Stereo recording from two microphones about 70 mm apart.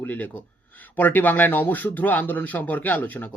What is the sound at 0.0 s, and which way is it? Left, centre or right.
Speech, left.